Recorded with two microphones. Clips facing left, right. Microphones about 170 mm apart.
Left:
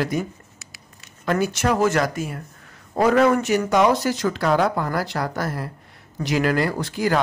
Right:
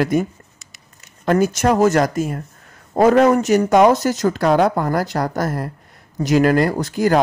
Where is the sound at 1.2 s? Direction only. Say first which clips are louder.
Right 5 dB; 45° right (ahead or behind).